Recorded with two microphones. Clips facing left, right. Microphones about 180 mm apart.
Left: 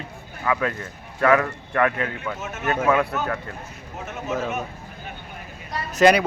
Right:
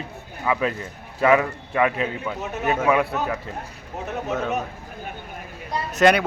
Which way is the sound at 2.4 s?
35° right (ahead or behind).